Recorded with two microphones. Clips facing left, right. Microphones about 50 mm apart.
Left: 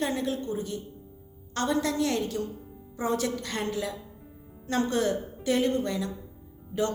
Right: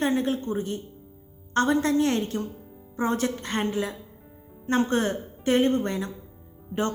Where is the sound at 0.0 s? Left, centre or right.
Right.